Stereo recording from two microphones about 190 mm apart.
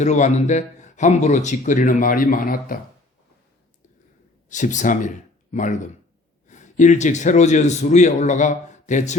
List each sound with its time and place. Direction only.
0.0 s a man's voice: 40° left (ahead or behind)
4.4 s a man's voice: 40° left (ahead or behind)